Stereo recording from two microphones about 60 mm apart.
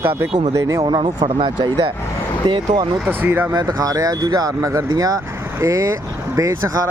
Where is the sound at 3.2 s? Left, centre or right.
Right.